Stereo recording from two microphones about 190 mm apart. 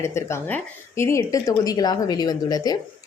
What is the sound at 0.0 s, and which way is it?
A woman's voice, 15° left (ahead or behind).